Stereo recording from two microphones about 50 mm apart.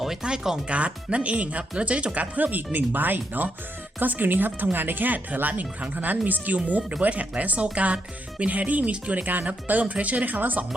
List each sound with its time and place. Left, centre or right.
0.2 s speech: centre; by 10.7 s right